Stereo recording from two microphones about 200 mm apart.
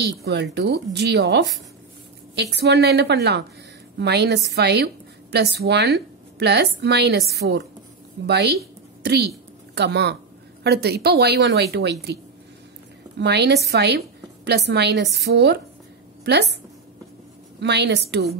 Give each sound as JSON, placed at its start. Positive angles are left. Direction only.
{"t": 0.0, "sound": "a woman's voice", "side_deg": -55}
{"t": 13.2, "sound": "a woman's voice", "side_deg": -55}
{"t": 17.6, "sound": "a woman's voice", "side_deg": -60}